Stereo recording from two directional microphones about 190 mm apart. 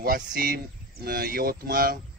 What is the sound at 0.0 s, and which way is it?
A man's voice, 50° right (ahead or behind).